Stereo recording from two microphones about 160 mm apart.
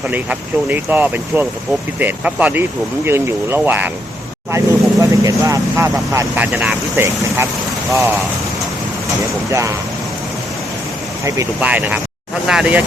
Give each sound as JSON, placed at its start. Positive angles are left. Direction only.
{"t": 0.1, "sound": "speech", "side_deg": -10}
{"t": 9.5, "sound": "speech", "side_deg": -20}
{"t": 11.2, "sound": "speech", "side_deg": -20}
{"t": 11.6, "sound": "speech", "side_deg": -10}